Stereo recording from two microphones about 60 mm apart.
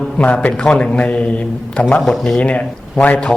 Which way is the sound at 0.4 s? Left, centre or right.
Centre.